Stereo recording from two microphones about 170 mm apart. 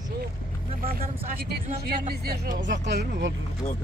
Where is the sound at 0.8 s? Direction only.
60° right (ahead or behind); by 3.3 s 90° right.